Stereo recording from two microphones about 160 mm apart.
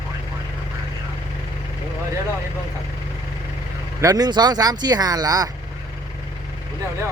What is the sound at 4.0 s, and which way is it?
Speech, 25° right (ahead or behind).